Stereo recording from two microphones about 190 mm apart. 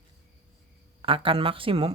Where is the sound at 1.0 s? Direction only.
25° right (ahead or behind).